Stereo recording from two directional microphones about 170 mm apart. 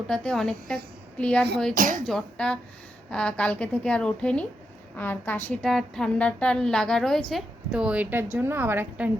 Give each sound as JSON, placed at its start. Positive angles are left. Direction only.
{"t": 0.1, "sound": "a woman's voice", "side_deg": 5}
{"t": 1.7, "sound": "speech", "side_deg": -50}
{"t": 2.0, "sound": "a woman's voice", "side_deg": 5}